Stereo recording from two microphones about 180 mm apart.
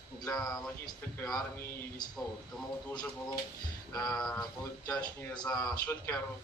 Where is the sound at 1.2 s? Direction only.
5° left (ahead or behind).